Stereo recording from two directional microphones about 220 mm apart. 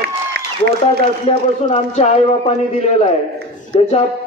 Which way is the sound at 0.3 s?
45° right (ahead or behind).